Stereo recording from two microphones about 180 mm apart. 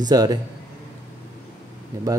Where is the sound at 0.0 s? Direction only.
20° right (ahead or behind).